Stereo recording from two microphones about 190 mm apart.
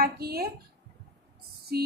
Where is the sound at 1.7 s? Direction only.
55° right (ahead or behind).